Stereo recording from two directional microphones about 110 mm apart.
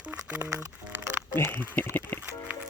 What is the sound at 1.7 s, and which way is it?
Speech, 15° left (ahead or behind).